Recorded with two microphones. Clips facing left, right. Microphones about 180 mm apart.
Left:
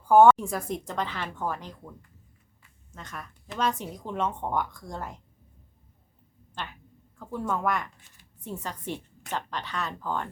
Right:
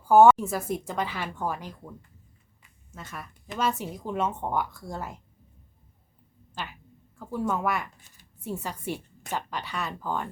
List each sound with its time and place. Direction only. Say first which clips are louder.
0.0 s a woman's voice: even; 5° right (ahead or behind)
2.9 s a woman's voice: right 1 dB; 5° right (ahead or behind)
6.5 s a woman's voice: right 1 dB; 5° right (ahead or behind)